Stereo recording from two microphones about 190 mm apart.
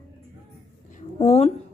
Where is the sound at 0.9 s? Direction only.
35° left (ahead or behind).